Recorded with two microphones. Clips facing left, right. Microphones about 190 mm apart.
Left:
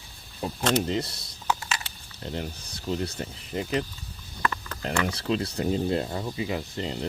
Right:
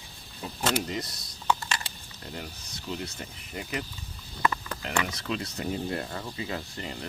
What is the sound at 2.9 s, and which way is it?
Speech, 35° left (ahead or behind).